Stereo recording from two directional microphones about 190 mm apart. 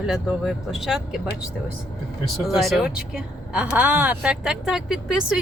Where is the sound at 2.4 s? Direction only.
Centre (ahead or behind).